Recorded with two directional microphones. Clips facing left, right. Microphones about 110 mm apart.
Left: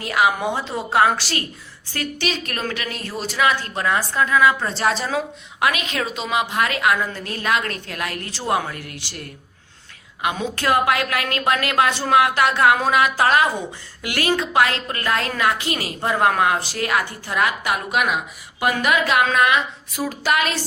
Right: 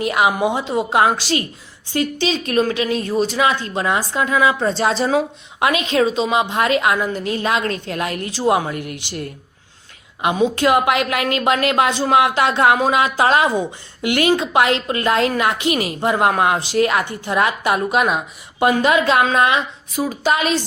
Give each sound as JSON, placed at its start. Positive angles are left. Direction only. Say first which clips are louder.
{"t": 0.0, "sound": "a woman's voice", "louder": "right 3 dB", "side_deg": -20}